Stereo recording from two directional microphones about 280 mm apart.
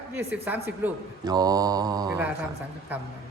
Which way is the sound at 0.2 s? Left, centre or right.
Centre.